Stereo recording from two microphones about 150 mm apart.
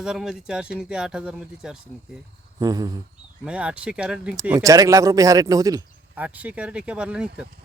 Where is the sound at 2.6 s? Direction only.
25° right (ahead or behind).